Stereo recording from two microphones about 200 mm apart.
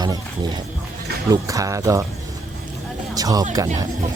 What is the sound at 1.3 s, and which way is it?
Speech, 15° right (ahead or behind).